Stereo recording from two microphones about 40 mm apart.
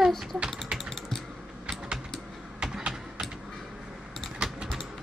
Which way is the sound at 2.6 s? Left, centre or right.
Centre.